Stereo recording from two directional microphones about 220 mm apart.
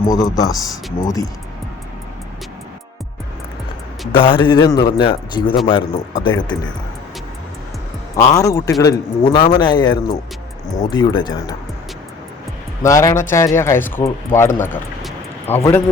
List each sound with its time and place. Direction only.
0.5 s speech: centre (ahead or behind)
1.0 s speech: 15° left (ahead or behind)
4.1 s a man's voice: 25° left (ahead or behind)
8.1 s a man's voice: 15° left (ahead or behind)
12.8 s speech: 15° left (ahead or behind)
15.0 s a sound: 10° left (ahead or behind)